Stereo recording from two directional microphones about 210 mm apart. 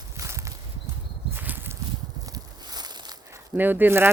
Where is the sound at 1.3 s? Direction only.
10° right (ahead or behind).